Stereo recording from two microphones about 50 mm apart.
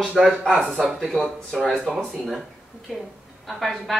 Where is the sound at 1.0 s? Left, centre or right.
Centre.